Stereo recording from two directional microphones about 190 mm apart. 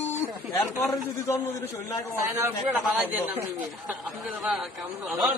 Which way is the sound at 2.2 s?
15° right (ahead or behind).